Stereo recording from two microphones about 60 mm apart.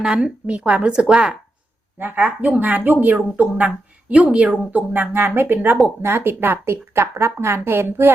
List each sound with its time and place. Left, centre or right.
0.0 s a woman's voice: centre
2.0 s speech: right
4.1 s a woman's voice: centre; by 8.1 s right